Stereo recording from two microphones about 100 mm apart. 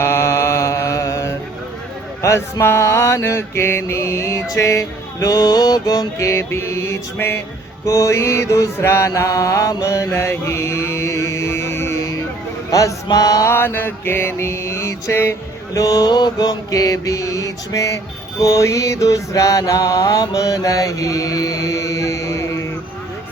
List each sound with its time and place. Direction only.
0.0 s mantra: 25° left (ahead or behind)